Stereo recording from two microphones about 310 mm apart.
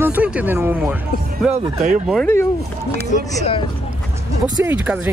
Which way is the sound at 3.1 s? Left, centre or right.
Left.